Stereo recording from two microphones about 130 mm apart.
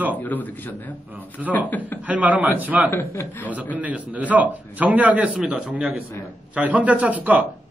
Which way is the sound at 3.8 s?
10° right (ahead or behind).